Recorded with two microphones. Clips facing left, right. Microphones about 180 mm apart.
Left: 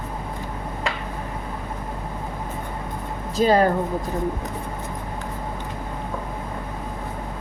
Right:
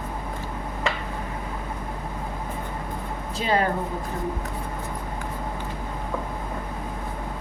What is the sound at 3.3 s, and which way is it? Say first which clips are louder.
Speech: left 7 dB; 40° left (ahead or behind).